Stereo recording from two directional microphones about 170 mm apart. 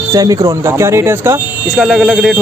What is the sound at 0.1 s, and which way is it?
Speech, 20° right (ahead or behind).